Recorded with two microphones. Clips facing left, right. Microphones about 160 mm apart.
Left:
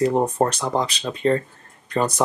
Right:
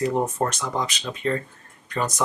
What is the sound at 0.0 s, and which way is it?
Speech, 35° left (ahead or behind).